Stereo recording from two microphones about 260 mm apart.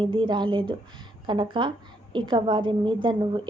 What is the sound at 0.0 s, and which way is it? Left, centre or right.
A woman's voice, centre.